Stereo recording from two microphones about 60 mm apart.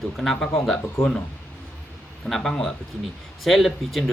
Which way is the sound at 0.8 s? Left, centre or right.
Left.